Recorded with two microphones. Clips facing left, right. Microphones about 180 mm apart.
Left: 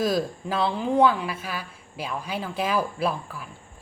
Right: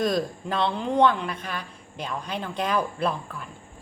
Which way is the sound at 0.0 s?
5° left (ahead or behind).